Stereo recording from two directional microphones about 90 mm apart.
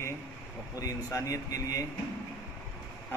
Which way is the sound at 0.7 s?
40° left (ahead or behind).